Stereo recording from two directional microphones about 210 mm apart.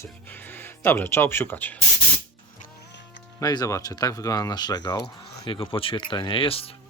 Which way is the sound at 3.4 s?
20° left (ahead or behind).